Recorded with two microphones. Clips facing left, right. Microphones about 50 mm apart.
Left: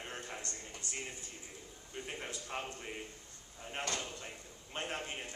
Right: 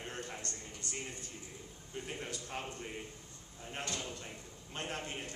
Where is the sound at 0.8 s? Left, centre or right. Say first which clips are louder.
Right 1 dB; right.